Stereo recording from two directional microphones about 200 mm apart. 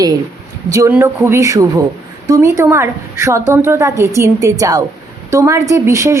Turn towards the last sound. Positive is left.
turn(degrees=-15)  # may be behind; listen again after turning